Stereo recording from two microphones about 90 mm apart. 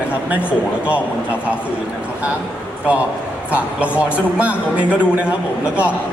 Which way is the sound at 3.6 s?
15° right (ahead or behind).